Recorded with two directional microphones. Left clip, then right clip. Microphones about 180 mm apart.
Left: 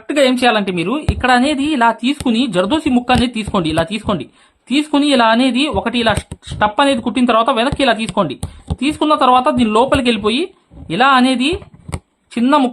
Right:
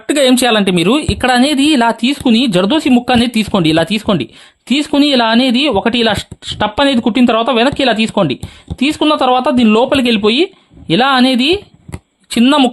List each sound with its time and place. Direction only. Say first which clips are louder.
0.1 s a woman's voice: right 2 dB; 50° right (ahead or behind)